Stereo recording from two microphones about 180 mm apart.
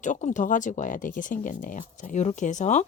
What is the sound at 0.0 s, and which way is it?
Speech, 40° left (ahead or behind).